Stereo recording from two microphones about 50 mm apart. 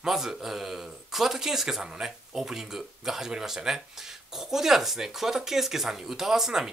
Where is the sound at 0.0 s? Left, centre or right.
Centre.